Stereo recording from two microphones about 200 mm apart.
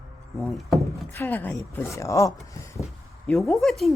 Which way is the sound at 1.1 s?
10° left (ahead or behind).